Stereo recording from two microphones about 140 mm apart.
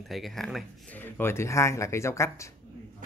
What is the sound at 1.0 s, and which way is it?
Speech, 15° left (ahead or behind).